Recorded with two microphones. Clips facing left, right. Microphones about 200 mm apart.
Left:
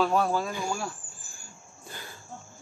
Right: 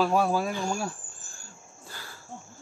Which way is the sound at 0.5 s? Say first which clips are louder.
Right 2 dB; 10° left (ahead or behind).